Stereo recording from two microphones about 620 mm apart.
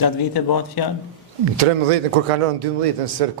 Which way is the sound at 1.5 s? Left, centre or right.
Right.